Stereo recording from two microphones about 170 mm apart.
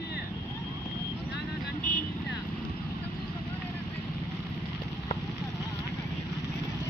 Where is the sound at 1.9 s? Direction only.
50° left (ahead or behind).